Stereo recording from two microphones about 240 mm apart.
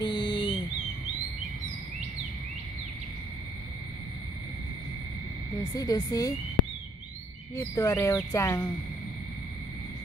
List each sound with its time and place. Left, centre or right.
0.0 s bird: centre
5.6 s speech: centre
7.5 s speech: centre